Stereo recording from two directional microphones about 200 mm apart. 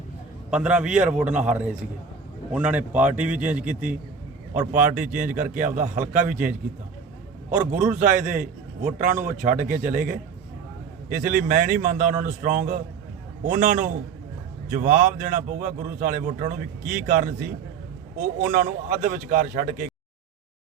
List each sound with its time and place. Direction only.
0.5 s a man's voice: 5° right (ahead or behind)
4.7 s a man's voice: 40° right (ahead or behind)
7.5 s a man's voice: 40° right (ahead or behind)